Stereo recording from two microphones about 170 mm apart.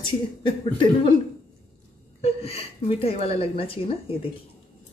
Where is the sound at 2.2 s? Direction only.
35° left (ahead or behind).